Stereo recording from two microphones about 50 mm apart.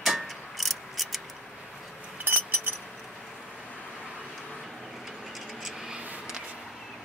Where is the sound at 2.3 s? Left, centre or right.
Right.